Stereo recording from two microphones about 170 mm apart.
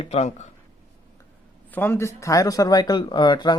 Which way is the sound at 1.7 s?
15° left (ahead or behind).